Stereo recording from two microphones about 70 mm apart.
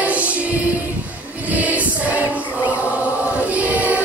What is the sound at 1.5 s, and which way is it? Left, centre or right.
Music, right.